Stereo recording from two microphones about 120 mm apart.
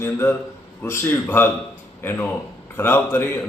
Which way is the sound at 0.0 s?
15° left (ahead or behind).